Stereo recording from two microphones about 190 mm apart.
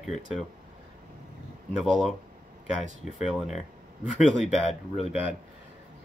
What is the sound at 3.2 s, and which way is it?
Speech, 35° left (ahead or behind).